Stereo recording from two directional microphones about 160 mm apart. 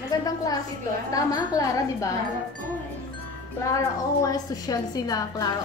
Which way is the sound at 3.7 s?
20° left (ahead or behind).